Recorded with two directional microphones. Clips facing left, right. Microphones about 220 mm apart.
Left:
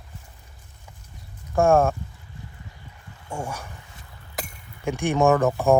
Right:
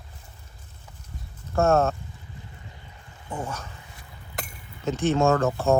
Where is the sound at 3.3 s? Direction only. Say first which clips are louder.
Left 1 dB; 10° left (ahead or behind).